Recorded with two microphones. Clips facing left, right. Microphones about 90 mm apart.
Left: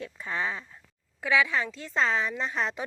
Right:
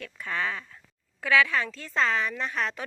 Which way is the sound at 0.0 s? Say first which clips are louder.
Even; 25° left (ahead or behind).